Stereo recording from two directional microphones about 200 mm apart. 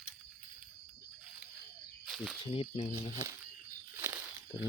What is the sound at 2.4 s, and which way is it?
Speech, 25° left (ahead or behind).